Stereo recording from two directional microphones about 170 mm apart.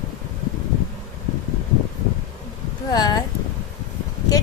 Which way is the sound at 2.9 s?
25° left (ahead or behind).